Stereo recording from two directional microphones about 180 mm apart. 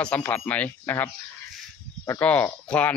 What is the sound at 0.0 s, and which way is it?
Speech, 10° left (ahead or behind).